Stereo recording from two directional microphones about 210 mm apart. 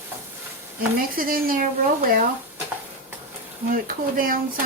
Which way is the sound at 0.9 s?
45° right (ahead or behind).